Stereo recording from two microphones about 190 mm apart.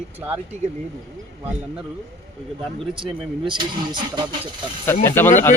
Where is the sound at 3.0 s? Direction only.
25° right (ahead or behind).